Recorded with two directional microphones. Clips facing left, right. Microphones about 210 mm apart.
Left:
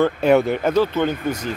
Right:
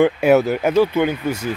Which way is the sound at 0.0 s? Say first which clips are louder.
Right 2 dB; 5° right (ahead or behind).